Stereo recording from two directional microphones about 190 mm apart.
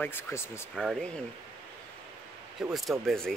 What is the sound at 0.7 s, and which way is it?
Speech, centre (ahead or behind).